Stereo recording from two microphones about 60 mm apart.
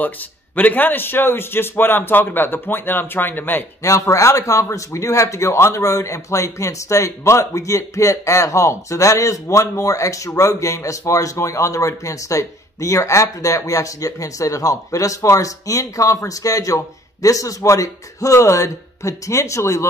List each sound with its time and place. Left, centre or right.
0.6 s a man's voice: left
3.8 s speech: left